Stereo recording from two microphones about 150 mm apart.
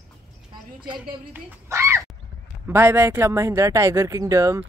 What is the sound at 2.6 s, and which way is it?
Speech, 15° right (ahead or behind).